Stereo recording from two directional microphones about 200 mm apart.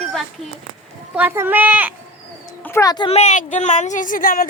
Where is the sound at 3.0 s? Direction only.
35° left (ahead or behind).